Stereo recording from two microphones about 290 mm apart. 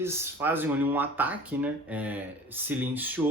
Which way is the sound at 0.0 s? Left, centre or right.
Centre.